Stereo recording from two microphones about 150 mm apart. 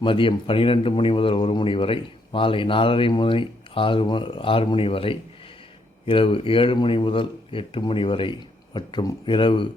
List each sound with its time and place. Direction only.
0.0 s speech: 35° left (ahead or behind)